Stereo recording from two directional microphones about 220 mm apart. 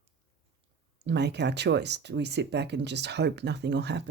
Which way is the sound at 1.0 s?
50° right (ahead or behind).